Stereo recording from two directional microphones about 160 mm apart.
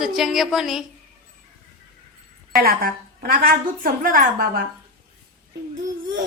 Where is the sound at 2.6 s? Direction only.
70° right (ahead or behind).